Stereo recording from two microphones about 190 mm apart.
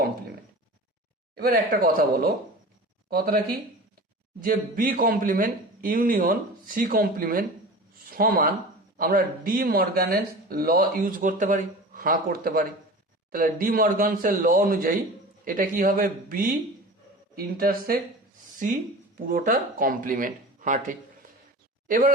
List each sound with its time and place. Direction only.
1.4 s speech: 50° right (ahead or behind)
4.4 s speech: 45° right (ahead or behind)
19.2 s speech: 45° right (ahead or behind)